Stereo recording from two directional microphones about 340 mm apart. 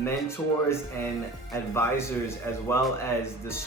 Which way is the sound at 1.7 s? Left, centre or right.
Centre.